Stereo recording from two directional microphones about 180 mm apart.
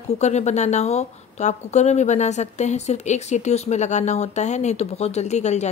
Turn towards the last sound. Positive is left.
turn(degrees=40)  # may be behind; listen again after turning